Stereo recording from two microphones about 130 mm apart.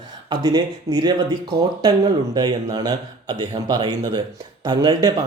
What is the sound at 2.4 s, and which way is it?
Speech, 30° right (ahead or behind).